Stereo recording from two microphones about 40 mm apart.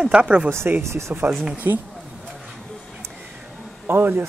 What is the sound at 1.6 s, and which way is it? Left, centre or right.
Speech, right.